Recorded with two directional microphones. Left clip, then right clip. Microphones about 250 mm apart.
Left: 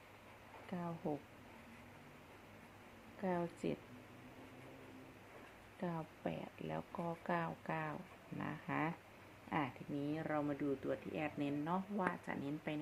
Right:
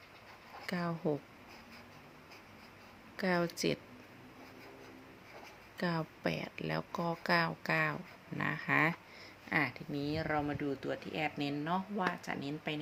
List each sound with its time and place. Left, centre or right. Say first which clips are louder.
0.7 s speech: right 9 dB; right
3.2 s speech: right 8 dB; right
5.8 s speech: right 8 dB; right; by 12.8 s centre